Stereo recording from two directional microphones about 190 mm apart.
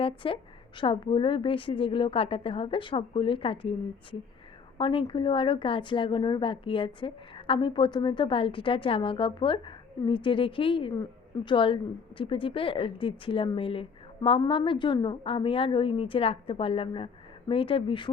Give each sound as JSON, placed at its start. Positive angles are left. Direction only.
{"t": 0.0, "sound": "a woman's voice", "side_deg": 30}
{"t": 4.8, "sound": "a woman's voice", "side_deg": 25}